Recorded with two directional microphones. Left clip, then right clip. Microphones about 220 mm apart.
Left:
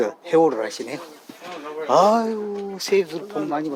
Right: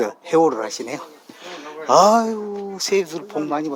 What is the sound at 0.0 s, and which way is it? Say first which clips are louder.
A man's voice: right 1 dB; 20° right (ahead or behind).